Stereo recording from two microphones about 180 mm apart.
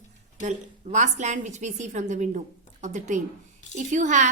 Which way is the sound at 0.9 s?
40° right (ahead or behind).